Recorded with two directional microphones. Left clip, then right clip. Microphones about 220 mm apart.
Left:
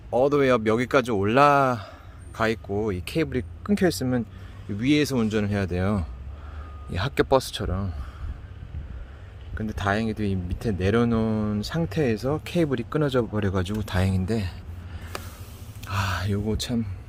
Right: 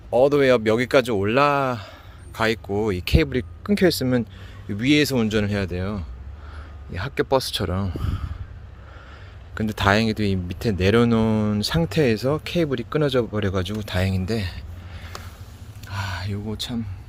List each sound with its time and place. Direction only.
0.1 s speech: centre (ahead or behind)
9.6 s speech: 10° right (ahead or behind)
15.8 s speech: 15° left (ahead or behind)